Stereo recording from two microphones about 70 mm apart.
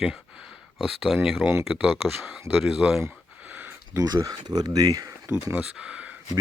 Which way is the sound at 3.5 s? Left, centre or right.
Right.